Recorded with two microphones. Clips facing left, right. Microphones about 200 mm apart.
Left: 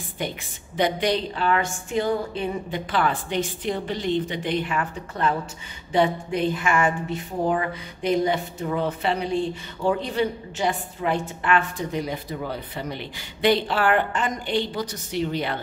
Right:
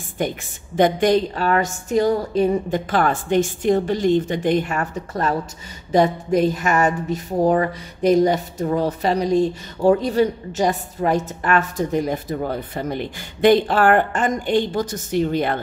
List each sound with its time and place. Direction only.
0.2 s a woman's voice: 50° right (ahead or behind)